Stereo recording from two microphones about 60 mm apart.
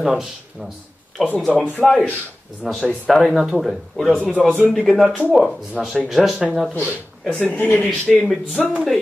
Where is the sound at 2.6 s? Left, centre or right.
Centre.